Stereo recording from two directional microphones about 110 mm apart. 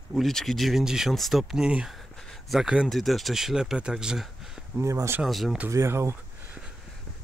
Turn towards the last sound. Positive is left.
turn(degrees=-25)  # may be behind; listen again after turning